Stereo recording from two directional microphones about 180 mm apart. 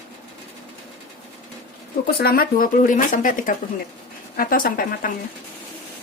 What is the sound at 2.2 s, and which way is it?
Speech, 55° left (ahead or behind).